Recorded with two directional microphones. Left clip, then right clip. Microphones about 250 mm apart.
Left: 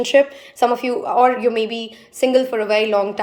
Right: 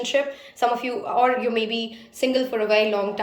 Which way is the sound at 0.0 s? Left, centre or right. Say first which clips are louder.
Left 8 dB; left.